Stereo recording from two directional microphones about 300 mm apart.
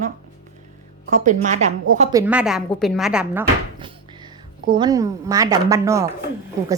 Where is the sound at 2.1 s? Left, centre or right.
Centre.